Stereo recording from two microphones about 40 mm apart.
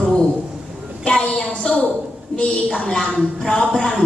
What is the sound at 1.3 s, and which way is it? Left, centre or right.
A woman's voice, centre.